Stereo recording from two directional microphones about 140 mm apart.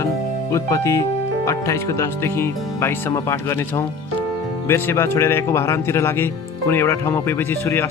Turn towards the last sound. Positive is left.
turn(degrees=15)  # may be behind; listen again after turning